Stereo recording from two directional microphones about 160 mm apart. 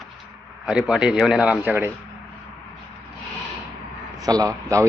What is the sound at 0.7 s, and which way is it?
Speech, 5° right (ahead or behind).